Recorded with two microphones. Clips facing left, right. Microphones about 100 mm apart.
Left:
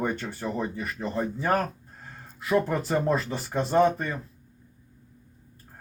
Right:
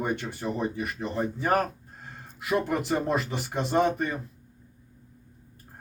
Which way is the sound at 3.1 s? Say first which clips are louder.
Left 1 dB; 20° right (ahead or behind).